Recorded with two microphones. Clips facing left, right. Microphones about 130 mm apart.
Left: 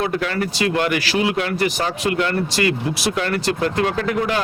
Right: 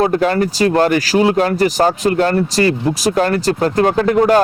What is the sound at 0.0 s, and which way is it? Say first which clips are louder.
Speech: right 8 dB; 40° right (ahead or behind).